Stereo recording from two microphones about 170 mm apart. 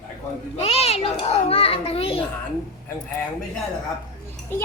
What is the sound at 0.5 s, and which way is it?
A child's voice, 35° left (ahead or behind).